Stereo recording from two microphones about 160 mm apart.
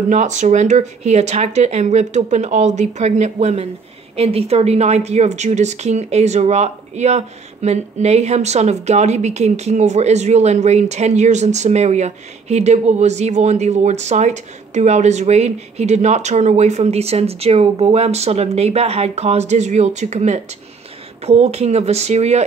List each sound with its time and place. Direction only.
0.1 s speech: 45° right (ahead or behind)